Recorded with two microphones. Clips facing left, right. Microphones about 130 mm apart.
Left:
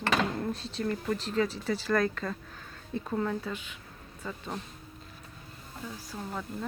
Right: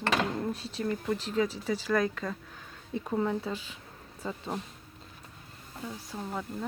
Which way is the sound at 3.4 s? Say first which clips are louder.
Right 2 dB; 35° right (ahead or behind).